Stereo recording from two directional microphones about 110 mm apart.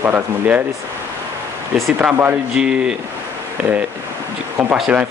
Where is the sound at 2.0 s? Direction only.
15° right (ahead or behind).